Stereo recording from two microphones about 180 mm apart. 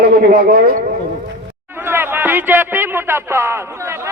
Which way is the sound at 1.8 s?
10° right (ahead or behind).